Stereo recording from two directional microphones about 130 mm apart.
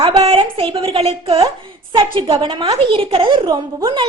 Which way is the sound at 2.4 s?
45° right (ahead or behind).